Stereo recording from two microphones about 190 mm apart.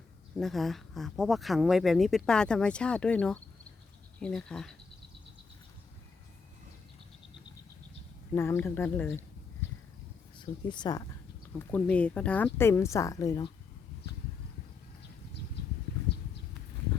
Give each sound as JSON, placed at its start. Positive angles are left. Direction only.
{"t": 0.3, "sound": "speech", "side_deg": 0}
{"t": 8.4, "sound": "a woman's voice", "side_deg": 10}
{"t": 10.3, "sound": "speech", "side_deg": 25}
{"t": 11.6, "sound": "a woman's voice", "side_deg": 5}